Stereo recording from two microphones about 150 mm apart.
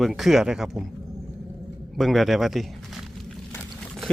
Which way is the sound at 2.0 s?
Centre (ahead or behind).